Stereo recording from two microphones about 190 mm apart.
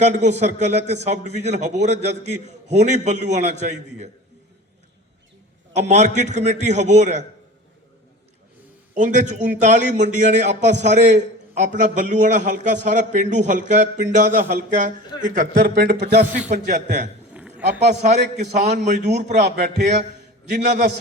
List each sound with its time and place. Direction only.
0.0 s a man's voice: 40° right (ahead or behind)
5.7 s a man's voice: 35° right (ahead or behind)
9.0 s a man's voice: 40° right (ahead or behind); by 16.1 s 60° right (ahead or behind)
16.5 s a man's voice: 40° right (ahead or behind)
19.6 s a man's voice: 60° right (ahead or behind)